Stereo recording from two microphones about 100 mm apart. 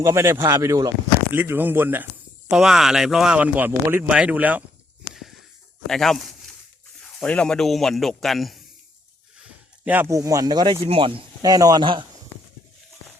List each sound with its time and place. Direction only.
0.0 s speech: 30° right (ahead or behind)
2.5 s speech: 5° right (ahead or behind)
5.9 s speech: 5° left (ahead or behind)
9.8 s speech: 15° right (ahead or behind)
10.1 s speech: 30° right (ahead or behind)
10.8 s speech: 70° right (ahead or behind)
11.4 s speech: 40° right (ahead or behind)